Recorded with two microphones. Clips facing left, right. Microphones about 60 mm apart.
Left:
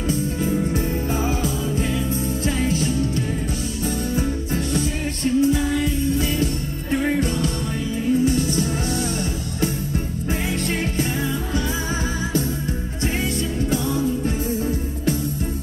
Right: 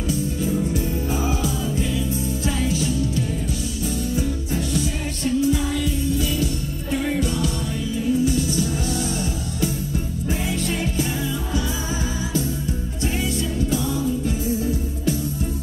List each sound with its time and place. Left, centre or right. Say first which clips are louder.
0.4 s music: left 1 dB; left
4.5 s music: left 1 dB; left
13.0 s music: left 1 dB; left